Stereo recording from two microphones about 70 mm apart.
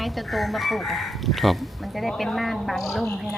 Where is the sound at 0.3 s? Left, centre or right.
Centre.